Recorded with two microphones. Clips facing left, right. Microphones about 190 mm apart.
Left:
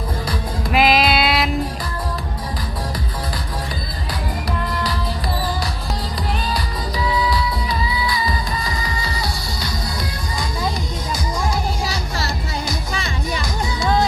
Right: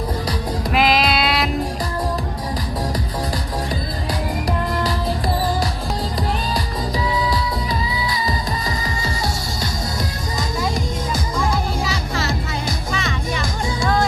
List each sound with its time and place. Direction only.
0.7 s music: 5° left (ahead or behind)
7.3 s music: 45° right (ahead or behind)
11.9 s music: 35° left (ahead or behind)